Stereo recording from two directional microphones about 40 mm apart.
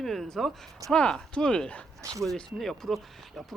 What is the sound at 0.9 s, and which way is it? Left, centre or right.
Speech, left.